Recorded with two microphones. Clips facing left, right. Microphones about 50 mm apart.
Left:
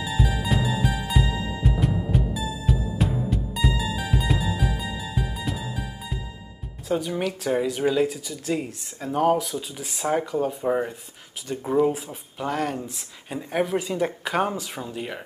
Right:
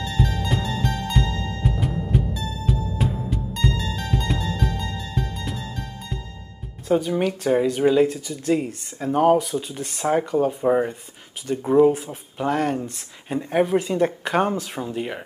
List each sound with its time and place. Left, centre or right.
0.0 s music: centre
6.9 s speech: centre
11.4 s speech: centre